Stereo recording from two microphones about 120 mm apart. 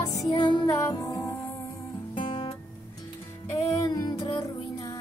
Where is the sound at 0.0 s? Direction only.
30° left (ahead or behind).